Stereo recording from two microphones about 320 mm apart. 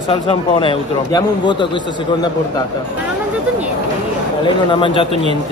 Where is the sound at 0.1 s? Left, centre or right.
Centre.